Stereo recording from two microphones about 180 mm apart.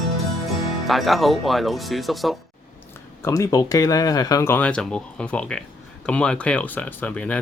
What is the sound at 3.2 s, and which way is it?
Speech, 20° left (ahead or behind).